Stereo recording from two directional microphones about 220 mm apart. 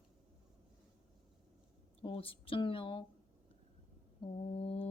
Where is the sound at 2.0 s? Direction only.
25° left (ahead or behind).